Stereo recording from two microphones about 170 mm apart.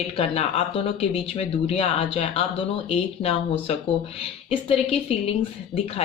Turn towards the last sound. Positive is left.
turn(degrees=35)  # may be behind; listen again after turning